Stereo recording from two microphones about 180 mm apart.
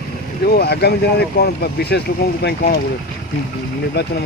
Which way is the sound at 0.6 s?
65° left (ahead or behind).